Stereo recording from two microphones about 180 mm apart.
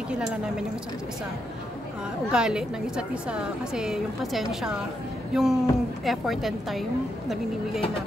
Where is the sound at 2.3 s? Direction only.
5° right (ahead or behind).